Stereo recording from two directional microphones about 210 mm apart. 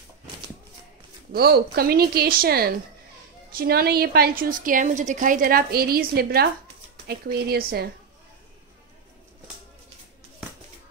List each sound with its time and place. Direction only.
1.3 s a woman's voice: 50° right (ahead or behind)